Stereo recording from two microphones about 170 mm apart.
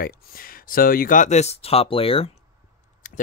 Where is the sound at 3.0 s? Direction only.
50° left (ahead or behind).